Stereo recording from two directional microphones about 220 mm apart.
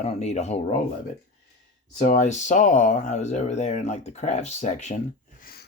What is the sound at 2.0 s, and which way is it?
Speech, 35° left (ahead or behind).